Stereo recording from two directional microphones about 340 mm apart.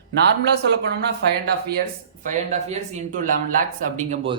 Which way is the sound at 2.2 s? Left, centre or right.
Right.